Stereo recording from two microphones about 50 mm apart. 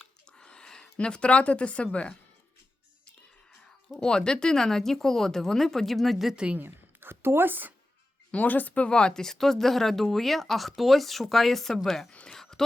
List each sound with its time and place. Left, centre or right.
0.0 s a sound: centre
0.9 s speech: left
4.0 s speech: centre
6.3 s a woman's voice: right
6.6 s a woman's voice: right
8.3 s speech: left
8.9 s speech: centre
12.3 s a sound: centre